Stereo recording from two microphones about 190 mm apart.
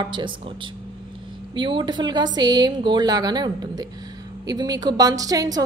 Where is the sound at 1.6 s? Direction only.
25° right (ahead or behind).